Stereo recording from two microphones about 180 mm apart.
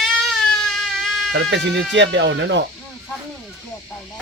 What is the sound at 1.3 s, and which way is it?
Speech, 80° right.